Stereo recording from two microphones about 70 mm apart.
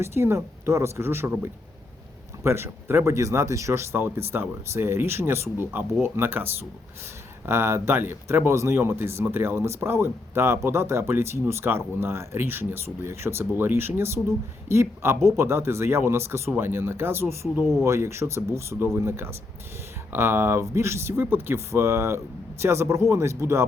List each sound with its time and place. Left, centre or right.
0.0 s speech: right